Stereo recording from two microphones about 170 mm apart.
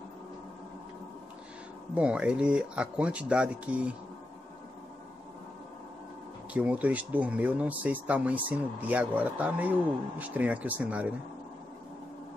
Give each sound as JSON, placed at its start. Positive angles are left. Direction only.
{"t": 2.0, "sound": "speech", "side_deg": -5}
{"t": 6.5, "sound": "speech", "side_deg": -10}